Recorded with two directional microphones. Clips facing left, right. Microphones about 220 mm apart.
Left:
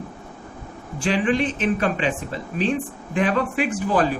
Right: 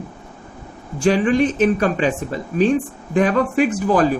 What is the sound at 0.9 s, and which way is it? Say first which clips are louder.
A woman's voice: right 5 dB; 40° right (ahead or behind).